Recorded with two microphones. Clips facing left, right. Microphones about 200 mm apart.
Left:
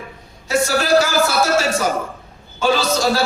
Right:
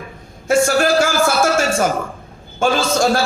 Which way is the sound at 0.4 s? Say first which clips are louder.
Right 4 dB; 50° right (ahead or behind).